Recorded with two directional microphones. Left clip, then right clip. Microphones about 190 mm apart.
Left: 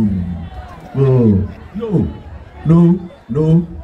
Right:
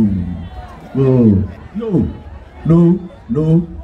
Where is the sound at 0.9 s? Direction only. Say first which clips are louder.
Right 1 dB; 35° left (ahead or behind).